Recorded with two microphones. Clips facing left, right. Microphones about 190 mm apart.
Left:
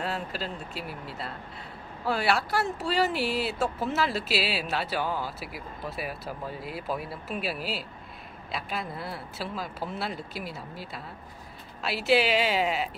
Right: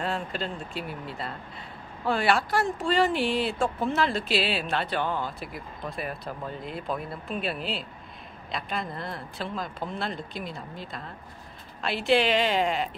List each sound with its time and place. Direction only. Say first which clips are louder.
0.0 s speech: right 2 dB; 5° left (ahead or behind)